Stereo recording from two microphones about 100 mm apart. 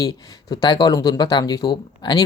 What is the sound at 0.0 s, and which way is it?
Speech, 40° left (ahead or behind).